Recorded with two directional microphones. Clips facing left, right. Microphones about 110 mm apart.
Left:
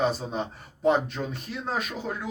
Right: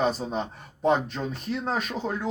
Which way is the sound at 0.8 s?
40° right (ahead or behind).